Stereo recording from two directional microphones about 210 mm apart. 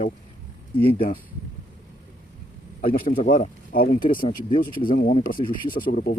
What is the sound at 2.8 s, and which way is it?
Speech, 45° left (ahead or behind).